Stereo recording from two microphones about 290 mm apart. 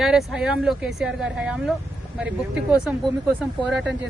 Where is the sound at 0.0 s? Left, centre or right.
Centre.